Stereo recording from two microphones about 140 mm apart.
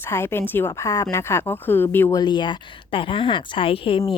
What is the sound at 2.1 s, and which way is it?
A woman's voice, 30° left (ahead or behind).